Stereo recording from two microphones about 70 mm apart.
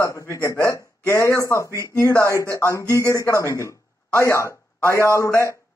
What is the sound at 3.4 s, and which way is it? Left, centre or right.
Speech, left.